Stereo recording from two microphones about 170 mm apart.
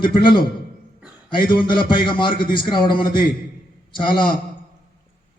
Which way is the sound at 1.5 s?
30° left (ahead or behind).